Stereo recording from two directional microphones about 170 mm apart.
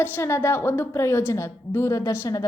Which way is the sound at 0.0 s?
15° left (ahead or behind).